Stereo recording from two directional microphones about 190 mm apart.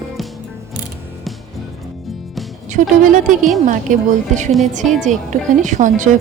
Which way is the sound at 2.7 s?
45° right (ahead or behind).